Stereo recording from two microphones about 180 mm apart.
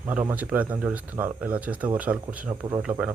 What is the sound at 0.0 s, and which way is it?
Speech, 10° right (ahead or behind).